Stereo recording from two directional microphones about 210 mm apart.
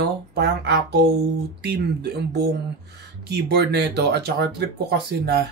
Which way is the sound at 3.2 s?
50° right (ahead or behind).